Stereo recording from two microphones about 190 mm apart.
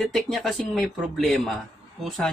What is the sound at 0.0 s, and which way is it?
Speech, centre (ahead or behind).